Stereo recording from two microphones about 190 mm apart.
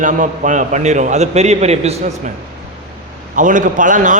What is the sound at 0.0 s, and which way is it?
Speech, 40° right (ahead or behind).